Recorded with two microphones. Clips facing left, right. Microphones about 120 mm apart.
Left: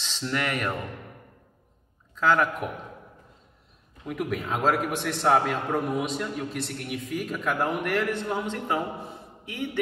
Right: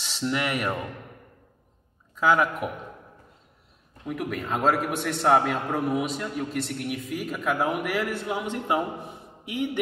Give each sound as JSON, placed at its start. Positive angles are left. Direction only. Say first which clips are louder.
{"t": 0.0, "sound": "speech", "louder": "right 2 dB", "side_deg": -10}
{"t": 2.1, "sound": "a man's voice", "louder": "right 1 dB", "side_deg": -10}
{"t": 4.1, "sound": "a man's voice", "louder": "even", "side_deg": 0}